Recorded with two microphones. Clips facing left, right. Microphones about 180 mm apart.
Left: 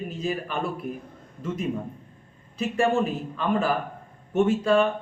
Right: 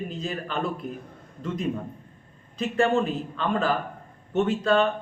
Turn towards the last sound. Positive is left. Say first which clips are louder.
# left 1 dB
turn(degrees=10)  # may be behind; listen again after turning